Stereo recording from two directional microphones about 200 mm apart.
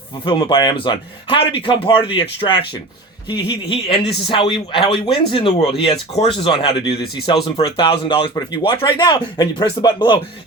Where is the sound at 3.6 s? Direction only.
25° left (ahead or behind).